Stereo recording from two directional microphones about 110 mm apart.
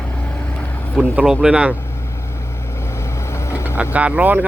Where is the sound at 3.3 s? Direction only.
25° left (ahead or behind).